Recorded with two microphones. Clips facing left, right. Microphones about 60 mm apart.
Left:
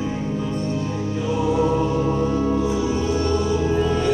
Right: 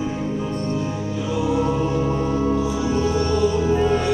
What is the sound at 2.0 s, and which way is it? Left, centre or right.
Music, centre.